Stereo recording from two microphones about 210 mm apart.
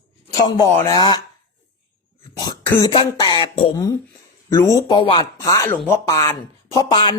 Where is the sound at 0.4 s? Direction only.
15° left (ahead or behind).